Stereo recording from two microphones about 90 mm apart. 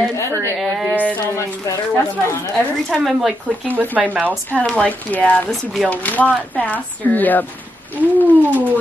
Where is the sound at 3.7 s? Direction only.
20° right (ahead or behind).